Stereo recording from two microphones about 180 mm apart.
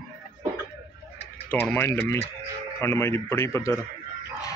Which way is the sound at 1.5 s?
10° left (ahead or behind).